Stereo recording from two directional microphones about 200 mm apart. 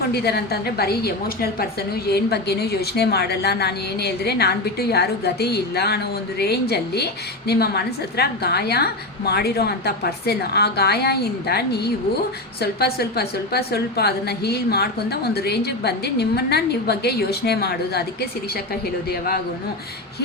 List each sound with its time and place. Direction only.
0.1 s a woman's voice: 55° left (ahead or behind)